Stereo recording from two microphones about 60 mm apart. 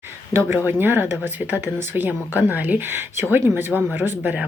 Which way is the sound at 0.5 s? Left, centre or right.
Right.